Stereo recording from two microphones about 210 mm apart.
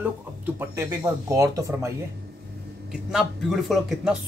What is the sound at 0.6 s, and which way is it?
Speech, 15° right (ahead or behind).